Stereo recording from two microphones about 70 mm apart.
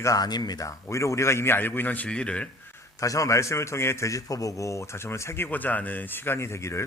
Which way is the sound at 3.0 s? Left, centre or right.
Left.